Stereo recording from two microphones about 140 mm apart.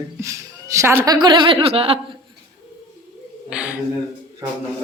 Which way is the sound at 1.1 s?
35° right (ahead or behind).